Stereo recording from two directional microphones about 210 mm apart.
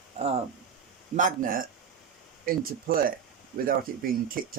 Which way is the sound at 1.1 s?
40° right (ahead or behind).